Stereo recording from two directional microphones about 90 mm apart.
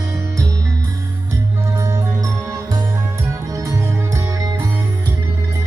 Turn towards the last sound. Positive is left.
turn(degrees=-40)  # may be behind; listen again after turning